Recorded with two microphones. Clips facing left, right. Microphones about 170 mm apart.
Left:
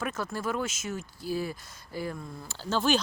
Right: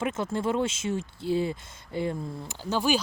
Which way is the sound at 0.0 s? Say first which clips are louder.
Right 4 dB; 25° right (ahead or behind).